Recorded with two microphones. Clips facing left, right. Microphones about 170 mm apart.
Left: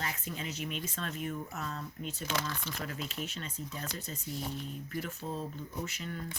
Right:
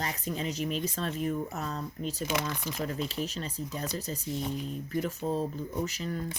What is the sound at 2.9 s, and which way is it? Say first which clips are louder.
Speech: right 6 dB; 35° right (ahead or behind).